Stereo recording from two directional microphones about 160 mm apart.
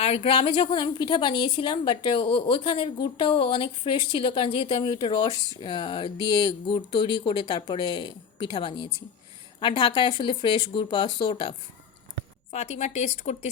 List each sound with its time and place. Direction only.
0.0 s a woman's voice: 35° left (ahead or behind)
12.5 s speech: 45° left (ahead or behind)